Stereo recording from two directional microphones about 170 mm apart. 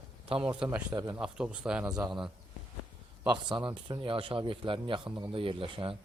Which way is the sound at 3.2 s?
25° right (ahead or behind).